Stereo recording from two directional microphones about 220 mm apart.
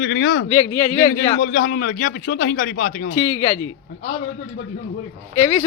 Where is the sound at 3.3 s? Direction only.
15° left (ahead or behind).